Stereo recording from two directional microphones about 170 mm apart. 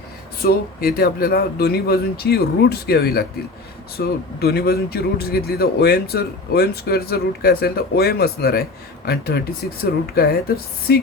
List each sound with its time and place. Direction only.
0.4 s speech: 60° left (ahead or behind)